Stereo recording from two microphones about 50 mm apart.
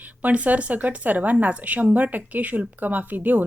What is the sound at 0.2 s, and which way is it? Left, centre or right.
Speech, right.